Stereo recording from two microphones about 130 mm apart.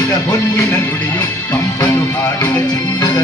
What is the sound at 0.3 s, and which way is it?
Music, 25° left (ahead or behind).